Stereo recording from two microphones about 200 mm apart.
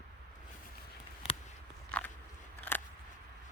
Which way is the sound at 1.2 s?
30° left (ahead or behind).